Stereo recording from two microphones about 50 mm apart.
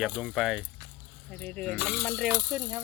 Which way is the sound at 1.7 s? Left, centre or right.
Right.